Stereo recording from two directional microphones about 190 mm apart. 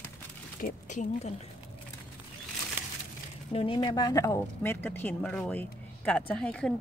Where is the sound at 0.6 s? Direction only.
40° left (ahead or behind).